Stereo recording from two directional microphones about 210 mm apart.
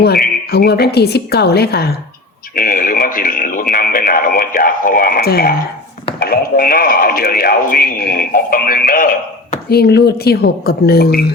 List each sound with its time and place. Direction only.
0.5 s speech: 50° left (ahead or behind)